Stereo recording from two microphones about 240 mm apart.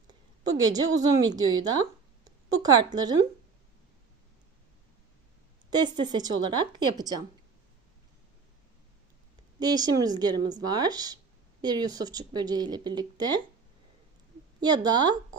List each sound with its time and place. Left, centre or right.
0.1 s a sound: centre
1.2 s speech: centre
5.7 s speech: centre
9.6 s speech: centre
14.8 s speech: centre